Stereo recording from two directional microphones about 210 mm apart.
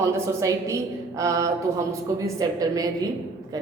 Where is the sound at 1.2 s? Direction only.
15° right (ahead or behind).